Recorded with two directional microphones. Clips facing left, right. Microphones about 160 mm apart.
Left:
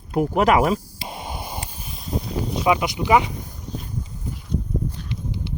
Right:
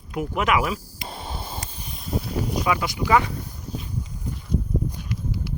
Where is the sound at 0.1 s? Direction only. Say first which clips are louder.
Left 5 dB; 35° left (ahead or behind).